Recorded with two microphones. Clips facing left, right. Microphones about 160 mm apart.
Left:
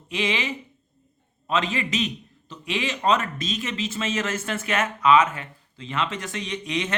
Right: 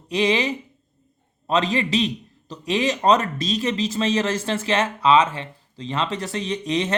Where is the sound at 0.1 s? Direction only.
35° right (ahead or behind).